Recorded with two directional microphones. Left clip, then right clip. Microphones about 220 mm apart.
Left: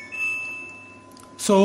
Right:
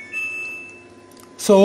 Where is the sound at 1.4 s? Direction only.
5° right (ahead or behind).